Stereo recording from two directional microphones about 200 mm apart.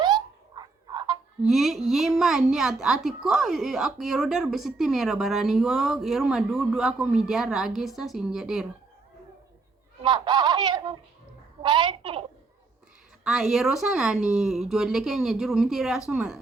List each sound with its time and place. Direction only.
0.0 s frog: 20° right (ahead or behind)
1.4 s speech: centre (ahead or behind)
10.0 s laughter: 20° right (ahead or behind)
11.6 s a sound: 25° right (ahead or behind)
13.2 s speech: centre (ahead or behind)